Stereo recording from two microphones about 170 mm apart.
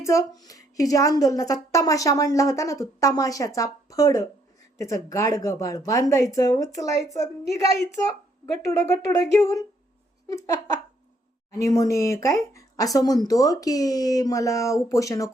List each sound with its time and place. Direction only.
0.0 s a woman's voice: 15° left (ahead or behind)
8.6 s a woman's voice: 20° left (ahead or behind)